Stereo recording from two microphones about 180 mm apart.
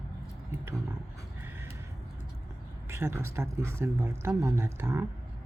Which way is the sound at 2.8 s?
15° right (ahead or behind).